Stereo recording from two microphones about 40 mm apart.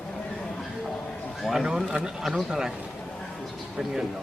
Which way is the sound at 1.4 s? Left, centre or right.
Centre.